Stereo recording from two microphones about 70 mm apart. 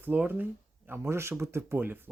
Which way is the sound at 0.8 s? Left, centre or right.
Right.